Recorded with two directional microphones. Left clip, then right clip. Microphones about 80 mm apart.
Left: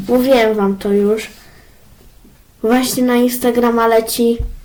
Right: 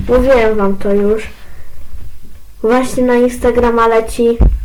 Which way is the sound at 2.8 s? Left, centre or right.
Centre.